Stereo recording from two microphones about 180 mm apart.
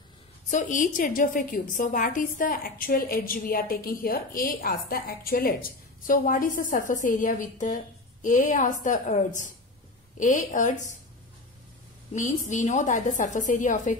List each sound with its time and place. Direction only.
0.5 s a woman's voice: 45° left (ahead or behind)
12.1 s a woman's voice: 45° left (ahead or behind)